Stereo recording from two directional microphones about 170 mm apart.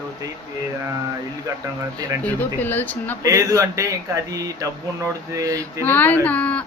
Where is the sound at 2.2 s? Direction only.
10° left (ahead or behind).